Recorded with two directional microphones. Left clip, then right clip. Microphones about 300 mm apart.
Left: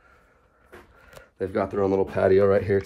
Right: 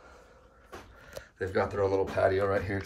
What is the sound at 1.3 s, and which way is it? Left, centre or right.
Speech, centre.